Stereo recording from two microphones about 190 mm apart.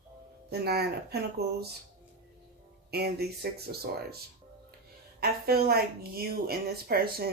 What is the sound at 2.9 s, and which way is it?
Speech, 55° right (ahead or behind).